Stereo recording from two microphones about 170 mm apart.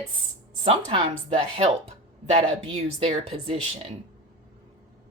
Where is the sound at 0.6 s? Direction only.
35° right (ahead or behind).